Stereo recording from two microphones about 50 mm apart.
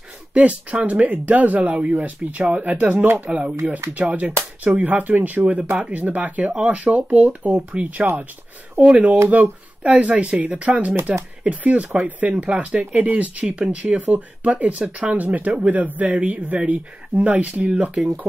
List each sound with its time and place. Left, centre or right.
0.3 s speech: right
17.6 s speech: centre